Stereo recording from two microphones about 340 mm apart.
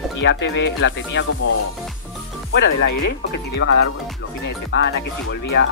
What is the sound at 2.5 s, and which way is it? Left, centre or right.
Speech, left.